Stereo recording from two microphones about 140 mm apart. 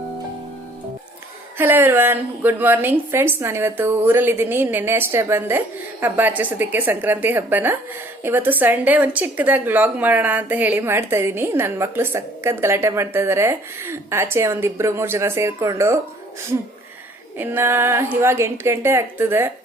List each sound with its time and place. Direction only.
1.5 s a woman's voice: 15° right (ahead or behind)
17.3 s a woman's voice: 15° right (ahead or behind)